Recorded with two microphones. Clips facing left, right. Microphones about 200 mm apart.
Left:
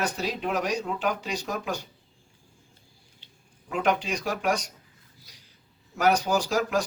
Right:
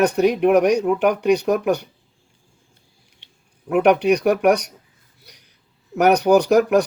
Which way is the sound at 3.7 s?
65° right (ahead or behind).